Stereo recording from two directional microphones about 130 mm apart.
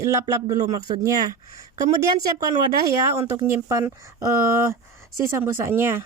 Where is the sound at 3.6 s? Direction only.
20° right (ahead or behind).